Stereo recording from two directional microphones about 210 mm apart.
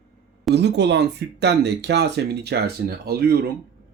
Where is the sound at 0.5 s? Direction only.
55° right (ahead or behind).